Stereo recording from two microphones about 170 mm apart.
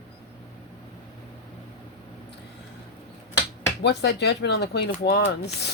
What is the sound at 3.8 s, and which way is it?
Speech, 80° left.